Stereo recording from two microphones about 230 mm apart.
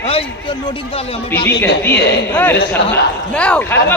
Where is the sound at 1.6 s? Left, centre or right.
Centre.